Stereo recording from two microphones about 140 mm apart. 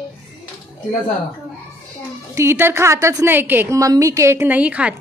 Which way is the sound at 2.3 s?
20° right (ahead or behind).